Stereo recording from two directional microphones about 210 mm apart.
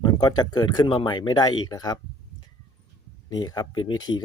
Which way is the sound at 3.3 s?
20° left (ahead or behind).